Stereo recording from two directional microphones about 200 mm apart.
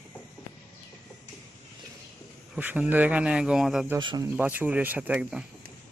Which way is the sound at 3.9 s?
20° right (ahead or behind).